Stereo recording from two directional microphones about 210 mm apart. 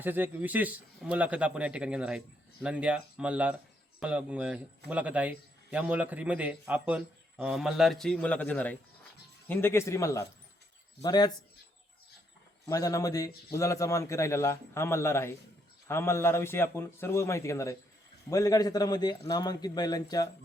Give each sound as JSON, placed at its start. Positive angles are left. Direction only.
{"t": 0.0, "sound": "a man's voice", "side_deg": -10}
{"t": 12.6, "sound": "a man's voice", "side_deg": 15}